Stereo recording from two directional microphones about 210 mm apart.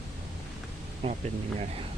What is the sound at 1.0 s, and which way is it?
Speech, 25° right (ahead or behind).